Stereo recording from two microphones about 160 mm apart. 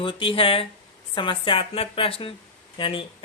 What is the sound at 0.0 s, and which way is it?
Speech, 30° left (ahead or behind).